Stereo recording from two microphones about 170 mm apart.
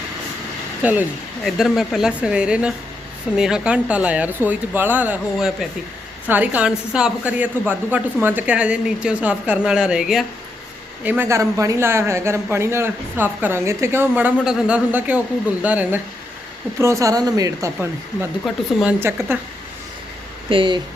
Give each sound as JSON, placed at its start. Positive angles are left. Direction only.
{"t": 0.8, "sound": "a woman's voice", "side_deg": -10}
{"t": 18.4, "sound": "speech", "side_deg": -5}
{"t": 20.5, "sound": "speech", "side_deg": -30}